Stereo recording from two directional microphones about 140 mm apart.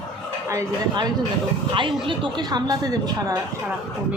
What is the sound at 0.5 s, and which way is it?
Speech, 20° right (ahead or behind).